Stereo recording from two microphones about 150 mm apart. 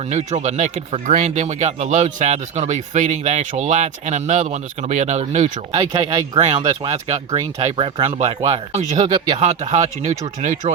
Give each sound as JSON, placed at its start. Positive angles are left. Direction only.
{"t": 0.1, "sound": "speech", "side_deg": -50}
{"t": 5.9, "sound": "speech", "side_deg": -20}
{"t": 6.3, "sound": "speech", "side_deg": -40}